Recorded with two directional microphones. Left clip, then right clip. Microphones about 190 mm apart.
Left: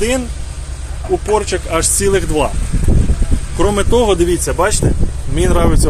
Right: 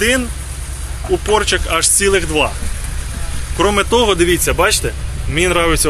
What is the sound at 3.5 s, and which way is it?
Speech, 20° left (ahead or behind).